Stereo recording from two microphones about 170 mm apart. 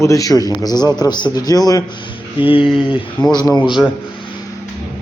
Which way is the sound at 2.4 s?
30° left (ahead or behind).